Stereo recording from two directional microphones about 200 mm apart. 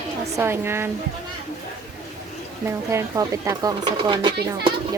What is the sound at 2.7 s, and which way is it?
Speech, 15° right (ahead or behind).